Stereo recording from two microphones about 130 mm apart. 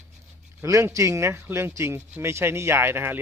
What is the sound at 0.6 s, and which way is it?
Speech, 25° right (ahead or behind).